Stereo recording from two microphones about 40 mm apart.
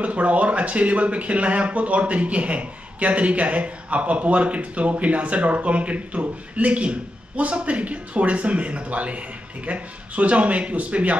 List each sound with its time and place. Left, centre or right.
0.0 s speech: right